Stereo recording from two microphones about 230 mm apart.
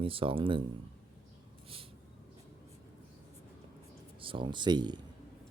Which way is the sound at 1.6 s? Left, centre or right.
Right.